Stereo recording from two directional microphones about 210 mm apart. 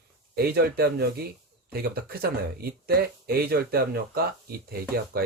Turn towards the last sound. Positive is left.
turn(degrees=-45)  # may be behind; listen again after turning